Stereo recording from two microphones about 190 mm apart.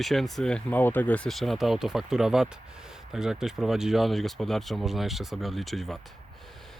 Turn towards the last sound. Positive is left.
turn(degrees=0)  # may be behind; listen again after turning